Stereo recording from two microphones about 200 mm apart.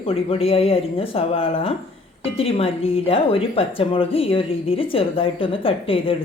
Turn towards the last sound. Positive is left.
turn(degrees=25)  # may be behind; listen again after turning